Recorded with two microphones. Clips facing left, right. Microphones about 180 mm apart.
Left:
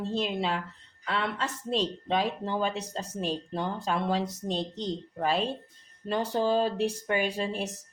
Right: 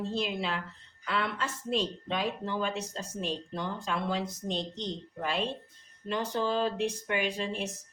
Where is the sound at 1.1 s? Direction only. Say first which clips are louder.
Left 1 dB; 35° left (ahead or behind).